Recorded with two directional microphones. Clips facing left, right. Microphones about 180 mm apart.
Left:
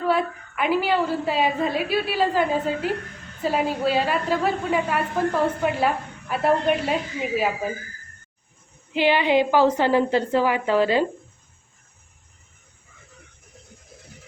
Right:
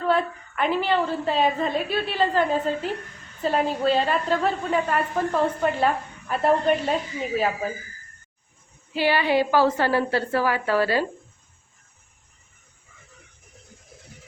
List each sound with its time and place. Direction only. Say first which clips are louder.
0.0 s a woman's voice: even; 5° left (ahead or behind)
8.9 s a woman's voice: left 2 dB; 20° left (ahead or behind)